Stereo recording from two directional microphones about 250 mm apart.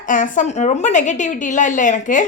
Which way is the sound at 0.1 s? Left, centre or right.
Left.